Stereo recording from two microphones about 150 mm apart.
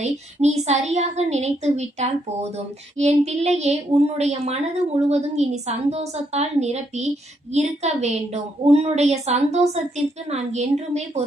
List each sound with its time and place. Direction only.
0.0 s a woman's voice: 50° right (ahead or behind)